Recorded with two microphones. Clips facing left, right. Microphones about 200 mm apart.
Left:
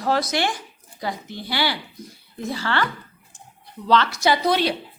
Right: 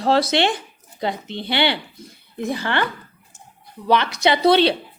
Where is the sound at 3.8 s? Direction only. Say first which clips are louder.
Right 1 dB; 15° right (ahead or behind).